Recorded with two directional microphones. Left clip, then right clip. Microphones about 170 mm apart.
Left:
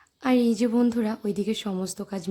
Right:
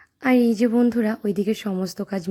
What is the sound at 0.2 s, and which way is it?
A woman's voice, 15° right (ahead or behind).